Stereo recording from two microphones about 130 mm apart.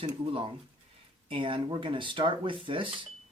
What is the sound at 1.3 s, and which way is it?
Speech, 40° right (ahead or behind).